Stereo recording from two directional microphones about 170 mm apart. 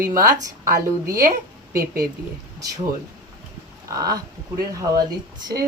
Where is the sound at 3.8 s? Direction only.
20° right (ahead or behind).